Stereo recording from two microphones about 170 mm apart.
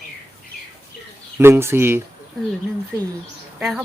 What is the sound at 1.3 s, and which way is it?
Speech, 15° right (ahead or behind).